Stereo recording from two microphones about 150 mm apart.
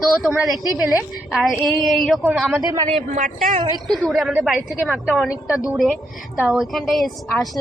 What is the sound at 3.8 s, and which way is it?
A woman's voice, centre (ahead or behind).